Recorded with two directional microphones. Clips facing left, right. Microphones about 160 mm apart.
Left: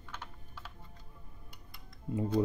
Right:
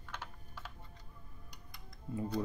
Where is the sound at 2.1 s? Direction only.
20° left (ahead or behind).